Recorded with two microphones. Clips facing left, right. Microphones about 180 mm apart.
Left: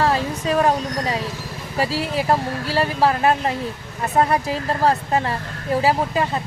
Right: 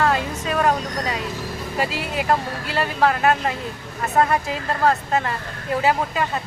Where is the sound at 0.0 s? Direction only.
35° left (ahead or behind).